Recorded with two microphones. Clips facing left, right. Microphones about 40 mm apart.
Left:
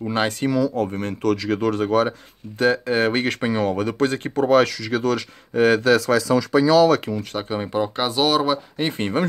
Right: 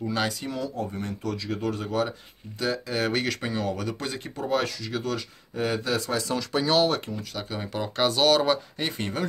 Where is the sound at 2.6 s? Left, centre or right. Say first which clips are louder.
Left 9 dB; left.